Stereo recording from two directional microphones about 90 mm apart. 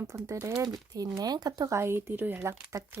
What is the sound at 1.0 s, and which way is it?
Speech, 45° right (ahead or behind).